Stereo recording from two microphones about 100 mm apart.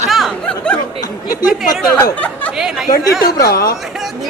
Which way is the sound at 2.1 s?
15° left (ahead or behind).